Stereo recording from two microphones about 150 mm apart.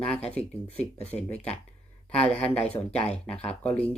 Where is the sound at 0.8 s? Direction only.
45° left (ahead or behind).